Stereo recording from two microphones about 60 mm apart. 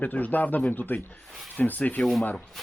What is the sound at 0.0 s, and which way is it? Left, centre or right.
Speech, left.